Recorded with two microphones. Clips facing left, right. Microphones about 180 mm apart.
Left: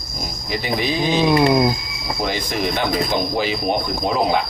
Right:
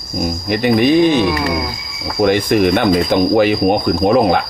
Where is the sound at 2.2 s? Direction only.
60° right (ahead or behind).